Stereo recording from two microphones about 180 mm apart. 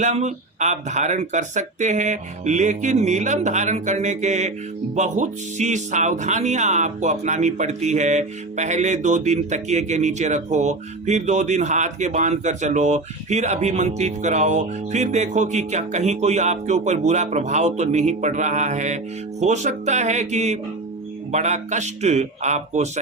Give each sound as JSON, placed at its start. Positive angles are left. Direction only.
{"t": 0.0, "sound": "speech", "side_deg": -40}